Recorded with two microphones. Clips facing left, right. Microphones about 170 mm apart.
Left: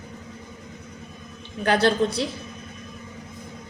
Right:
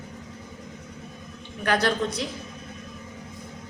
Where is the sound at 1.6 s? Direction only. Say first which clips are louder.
Left 4 dB; 30° left (ahead or behind).